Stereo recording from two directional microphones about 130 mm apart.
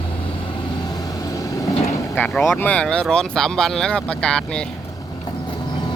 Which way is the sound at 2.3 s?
Centre (ahead or behind).